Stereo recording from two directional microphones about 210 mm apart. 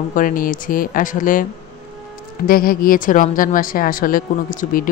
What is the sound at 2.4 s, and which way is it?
A woman's voice, 45° left (ahead or behind).